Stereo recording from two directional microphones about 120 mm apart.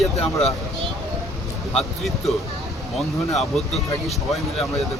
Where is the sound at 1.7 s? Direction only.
Centre (ahead or behind).